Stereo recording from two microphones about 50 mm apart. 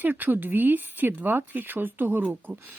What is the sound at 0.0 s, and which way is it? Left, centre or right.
Speech, right.